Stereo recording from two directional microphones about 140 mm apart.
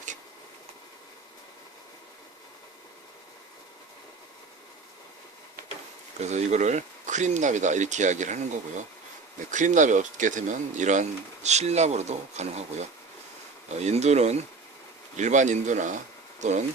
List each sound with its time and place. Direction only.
6.1 s speech: 55° right (ahead or behind)
13.7 s speech: 55° right (ahead or behind)